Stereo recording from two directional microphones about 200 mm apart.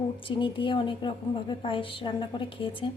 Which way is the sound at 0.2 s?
25° left (ahead or behind).